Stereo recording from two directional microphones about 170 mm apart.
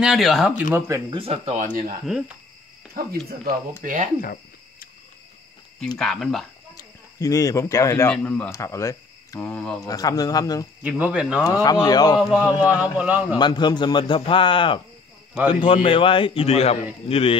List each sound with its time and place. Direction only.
0.0 s speech: centre (ahead or behind)
0.7 s speech: 15° right (ahead or behind)
1.1 s speech: 35° right (ahead or behind); by 2.0 s 55° right (ahead or behind)
3.8 s speech: 45° right (ahead or behind)
4.2 s cricket: 55° left (ahead or behind)
5.9 s speech: centre (ahead or behind)
6.7 s speech: 20° left (ahead or behind)
9.5 s speech: 5° left (ahead or behind)
9.8 s a man's voice: 20° left (ahead or behind)
10.8 s speech: 5° right (ahead or behind)
11.4 s a man's voice: 25° left (ahead or behind)
12.2 s speech: 5° right (ahead or behind)
13.4 s a man's voice: 25° left (ahead or behind)